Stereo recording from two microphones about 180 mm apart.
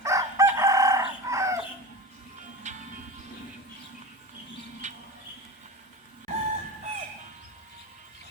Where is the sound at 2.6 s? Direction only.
40° right (ahead or behind).